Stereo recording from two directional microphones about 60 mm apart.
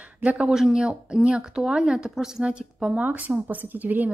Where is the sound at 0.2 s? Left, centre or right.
Right.